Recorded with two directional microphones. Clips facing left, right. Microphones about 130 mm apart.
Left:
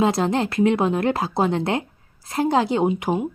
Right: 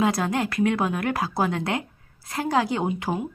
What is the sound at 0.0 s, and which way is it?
Speech, 25° left (ahead or behind).